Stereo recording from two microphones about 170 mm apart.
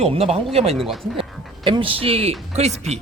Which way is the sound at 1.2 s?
30° right (ahead or behind).